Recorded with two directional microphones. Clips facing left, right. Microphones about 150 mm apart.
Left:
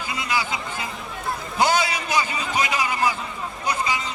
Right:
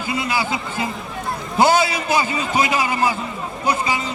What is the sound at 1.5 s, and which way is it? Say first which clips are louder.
A man's voice: right 5 dB; 30° right (ahead or behind).